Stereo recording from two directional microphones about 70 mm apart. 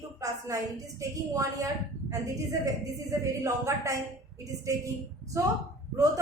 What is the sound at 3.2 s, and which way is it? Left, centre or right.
Speech, right.